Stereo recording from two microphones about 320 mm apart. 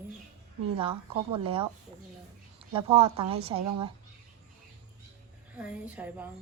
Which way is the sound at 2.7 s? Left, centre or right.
Centre.